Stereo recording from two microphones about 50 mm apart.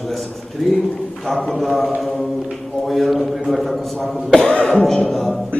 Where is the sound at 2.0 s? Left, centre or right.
Centre.